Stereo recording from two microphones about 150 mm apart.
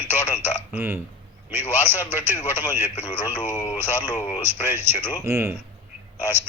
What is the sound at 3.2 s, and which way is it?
Speech, 15° right (ahead or behind).